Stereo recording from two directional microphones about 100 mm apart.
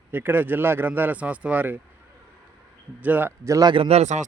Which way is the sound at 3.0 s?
15° right (ahead or behind).